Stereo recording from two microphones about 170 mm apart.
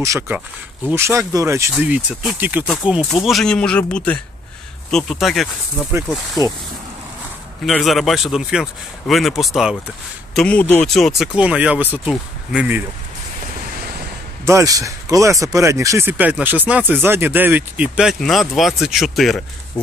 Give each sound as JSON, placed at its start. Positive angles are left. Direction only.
{"t": 0.0, "sound": "speech", "side_deg": -20}
{"t": 6.4, "sound": "speech", "side_deg": -20}
{"t": 7.6, "sound": "speech", "side_deg": 0}
{"t": 14.4, "sound": "speech", "side_deg": -20}